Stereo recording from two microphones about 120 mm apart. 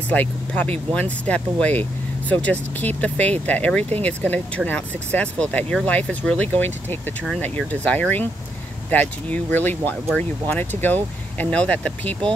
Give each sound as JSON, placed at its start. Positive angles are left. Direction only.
{"t": 0.1, "sound": "speech", "side_deg": 15}